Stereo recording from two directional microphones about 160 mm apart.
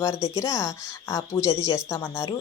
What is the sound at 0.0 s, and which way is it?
A woman's voice, 20° left (ahead or behind).